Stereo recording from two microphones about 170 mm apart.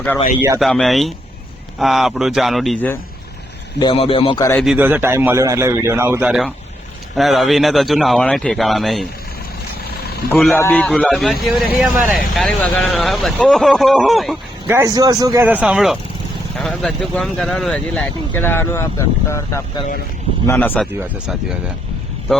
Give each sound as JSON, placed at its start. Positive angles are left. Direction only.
{"t": 0.6, "sound": "a man's voice", "side_deg": 0}
{"t": 3.8, "sound": "a man's voice", "side_deg": 30}
{"t": 4.5, "sound": "a man's voice", "side_deg": 0}
{"t": 10.3, "sound": "a man's voice", "side_deg": 0}
{"t": 14.7, "sound": "a man's voice", "side_deg": -20}